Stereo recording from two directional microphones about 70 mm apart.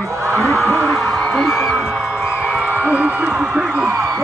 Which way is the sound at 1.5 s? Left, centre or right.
Centre.